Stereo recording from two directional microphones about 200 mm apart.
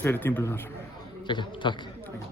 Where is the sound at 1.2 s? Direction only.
25° left (ahead or behind).